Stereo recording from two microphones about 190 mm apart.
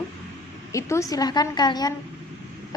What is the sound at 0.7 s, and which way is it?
A woman's voice, 15° left (ahead or behind).